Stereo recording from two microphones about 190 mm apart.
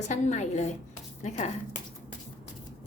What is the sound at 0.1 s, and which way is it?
Speech, 40° left (ahead or behind).